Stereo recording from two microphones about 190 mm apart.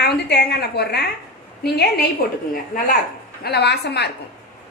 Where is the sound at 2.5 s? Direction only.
45° left (ahead or behind).